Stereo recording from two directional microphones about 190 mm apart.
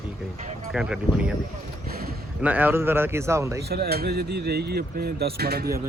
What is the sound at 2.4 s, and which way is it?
A man's voice, 10° right (ahead or behind).